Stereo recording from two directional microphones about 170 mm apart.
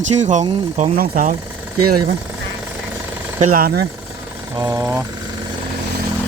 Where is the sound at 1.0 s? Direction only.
55° right (ahead or behind).